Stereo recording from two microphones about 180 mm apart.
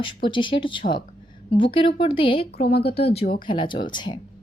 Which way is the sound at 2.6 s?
60° left (ahead or behind).